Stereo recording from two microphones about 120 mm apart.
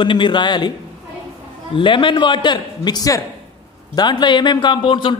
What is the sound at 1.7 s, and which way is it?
Speech, 45° left (ahead or behind).